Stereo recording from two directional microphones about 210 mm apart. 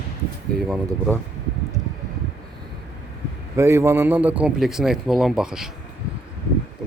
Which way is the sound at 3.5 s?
10° right (ahead or behind).